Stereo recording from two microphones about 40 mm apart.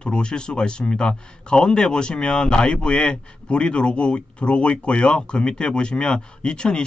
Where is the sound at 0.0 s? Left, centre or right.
Left.